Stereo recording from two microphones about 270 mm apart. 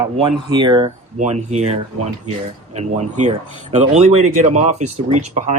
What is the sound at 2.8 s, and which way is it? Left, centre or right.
Speech, right.